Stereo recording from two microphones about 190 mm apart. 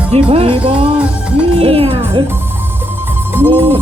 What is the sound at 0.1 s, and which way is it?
Music, 30° right (ahead or behind).